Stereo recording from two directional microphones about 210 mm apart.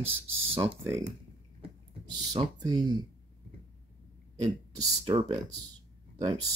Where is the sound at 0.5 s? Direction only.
20° right (ahead or behind).